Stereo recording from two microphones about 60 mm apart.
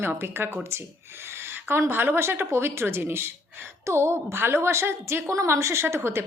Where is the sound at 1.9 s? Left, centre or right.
Right.